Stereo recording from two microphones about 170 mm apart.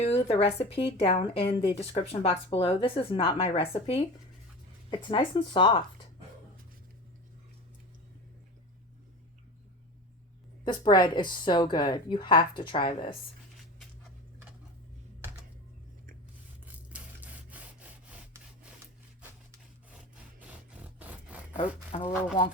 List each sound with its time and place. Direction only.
0.0 s a woman's voice: 35° left (ahead or behind)
5.0 s a woman's voice: 30° left (ahead or behind)
10.6 s a woman's voice: 25° left (ahead or behind)
16.6 s a sound: 10° right (ahead or behind)
21.0 s a sound: 10° right (ahead or behind)
21.9 s a woman's voice: 35° left (ahead or behind)